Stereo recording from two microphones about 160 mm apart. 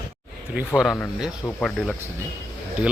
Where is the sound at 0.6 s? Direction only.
5° right (ahead or behind).